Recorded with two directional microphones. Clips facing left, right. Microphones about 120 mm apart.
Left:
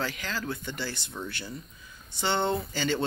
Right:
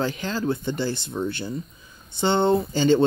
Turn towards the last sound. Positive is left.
turn(degrees=-25)  # may be behind; listen again after turning